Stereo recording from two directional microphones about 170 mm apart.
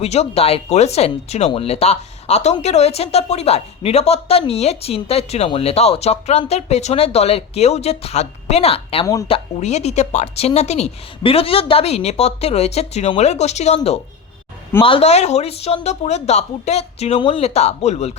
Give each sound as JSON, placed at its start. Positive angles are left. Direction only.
{"t": 0.0, "sound": "speech", "side_deg": 40}